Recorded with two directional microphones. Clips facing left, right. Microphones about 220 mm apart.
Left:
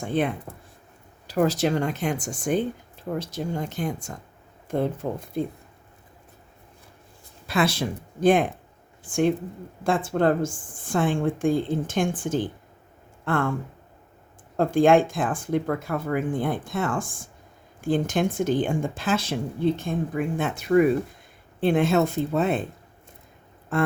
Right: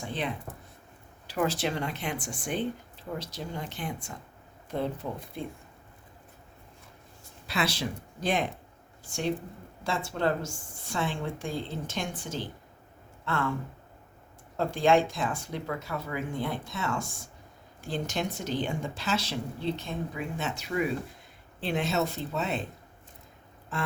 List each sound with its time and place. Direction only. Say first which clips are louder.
0.0 s speech: left 9 dB; 50° left (ahead or behind)
1.3 s speech: left 7 dB; 40° left (ahead or behind)
7.4 s speech: left 7 dB; 50° left (ahead or behind)
23.7 s speech: left 10 dB; 55° left (ahead or behind)